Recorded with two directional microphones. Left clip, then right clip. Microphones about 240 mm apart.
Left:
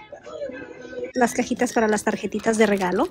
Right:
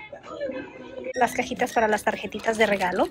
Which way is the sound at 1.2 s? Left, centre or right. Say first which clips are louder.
Left 2 dB; left.